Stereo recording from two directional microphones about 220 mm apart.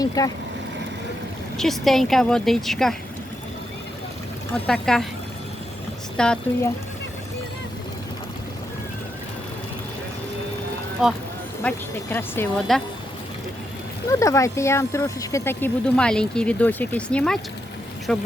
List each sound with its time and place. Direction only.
0.2 s speech: 15° left (ahead or behind)
1.5 s a woman's voice: centre (ahead or behind)
4.5 s a woman's voice: 5° left (ahead or behind)
6.1 s a woman's voice: 5° left (ahead or behind)
12.1 s a woman's voice: 10° left (ahead or behind)
14.1 s a woman's voice: 15° left (ahead or behind)